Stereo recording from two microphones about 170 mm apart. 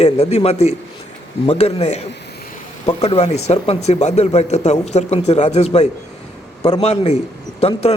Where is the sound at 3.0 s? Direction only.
40° left (ahead or behind).